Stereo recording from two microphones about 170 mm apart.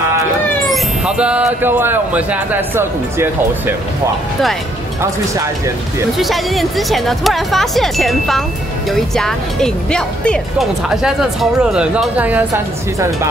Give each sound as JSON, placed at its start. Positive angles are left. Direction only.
{"t": 0.7, "sound": "speech", "side_deg": -5}
{"t": 6.1, "sound": "speech", "side_deg": 0}